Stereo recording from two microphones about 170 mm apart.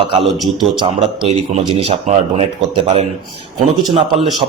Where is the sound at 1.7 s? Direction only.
35° right (ahead or behind).